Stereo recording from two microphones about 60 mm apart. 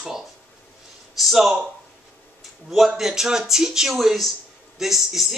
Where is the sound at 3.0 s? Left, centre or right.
Centre.